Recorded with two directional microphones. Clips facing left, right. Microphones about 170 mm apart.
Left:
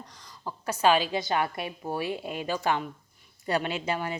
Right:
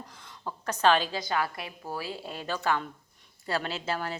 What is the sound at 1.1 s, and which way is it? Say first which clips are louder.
A woman's voice: left 3 dB; 25° left (ahead or behind).